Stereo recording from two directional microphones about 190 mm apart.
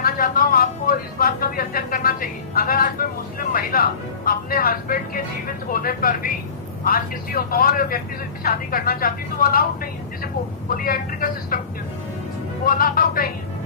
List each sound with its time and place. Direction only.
0.0 s a sound: 50° left (ahead or behind)
4.3 s speech: 50° left (ahead or behind)
12.6 s speech: 50° left (ahead or behind)